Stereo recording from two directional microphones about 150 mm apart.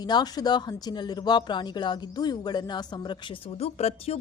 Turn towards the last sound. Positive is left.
turn(degrees=45)  # may be behind; listen again after turning